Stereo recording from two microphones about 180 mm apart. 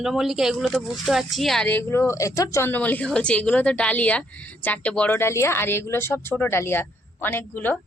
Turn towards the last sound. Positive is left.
turn(degrees=10)  # may be behind; listen again after turning